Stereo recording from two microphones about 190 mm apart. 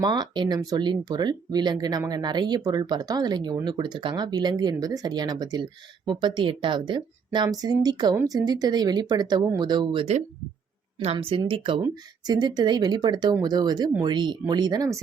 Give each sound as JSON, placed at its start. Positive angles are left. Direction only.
{"t": 0.0, "sound": "speech", "side_deg": -20}